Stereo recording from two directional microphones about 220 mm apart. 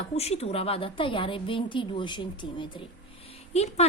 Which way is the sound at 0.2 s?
30° left (ahead or behind).